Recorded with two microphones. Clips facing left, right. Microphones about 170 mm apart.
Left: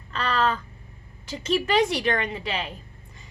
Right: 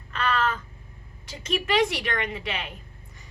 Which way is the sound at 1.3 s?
35° left (ahead or behind).